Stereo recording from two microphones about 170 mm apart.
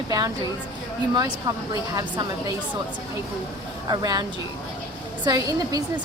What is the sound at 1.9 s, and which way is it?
Speech, 20° right (ahead or behind).